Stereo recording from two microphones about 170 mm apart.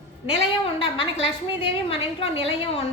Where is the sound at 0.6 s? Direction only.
30° left (ahead or behind).